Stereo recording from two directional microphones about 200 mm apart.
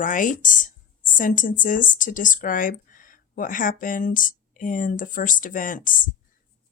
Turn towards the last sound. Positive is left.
turn(degrees=40)  # may be behind; listen again after turning